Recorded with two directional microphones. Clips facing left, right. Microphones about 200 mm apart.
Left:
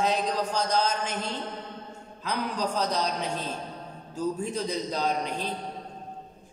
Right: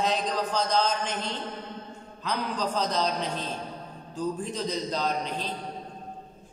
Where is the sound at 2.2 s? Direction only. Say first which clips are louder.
Even; 10° left (ahead or behind).